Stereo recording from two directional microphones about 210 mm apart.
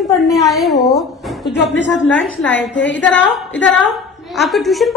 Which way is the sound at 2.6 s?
60° left (ahead or behind).